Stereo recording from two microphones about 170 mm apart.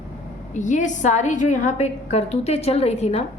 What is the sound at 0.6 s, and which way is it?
A woman's voice, 45° left (ahead or behind).